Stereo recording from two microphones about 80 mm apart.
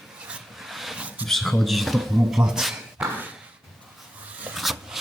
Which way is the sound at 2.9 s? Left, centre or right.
Centre.